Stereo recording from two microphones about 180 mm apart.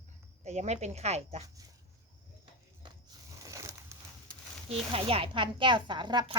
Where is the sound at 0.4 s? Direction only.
40° right (ahead or behind).